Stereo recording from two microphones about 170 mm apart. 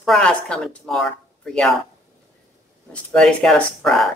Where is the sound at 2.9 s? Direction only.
5° left (ahead or behind).